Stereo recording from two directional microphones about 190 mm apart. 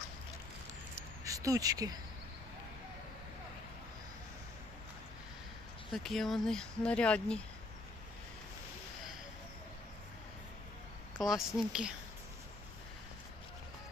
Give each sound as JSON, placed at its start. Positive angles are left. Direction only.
{"t": 1.2, "sound": "speech", "side_deg": -15}
{"t": 5.9, "sound": "speech", "side_deg": 0}
{"t": 11.2, "sound": "speech", "side_deg": 0}